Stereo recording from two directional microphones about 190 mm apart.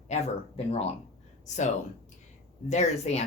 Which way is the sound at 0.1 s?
35° left (ahead or behind).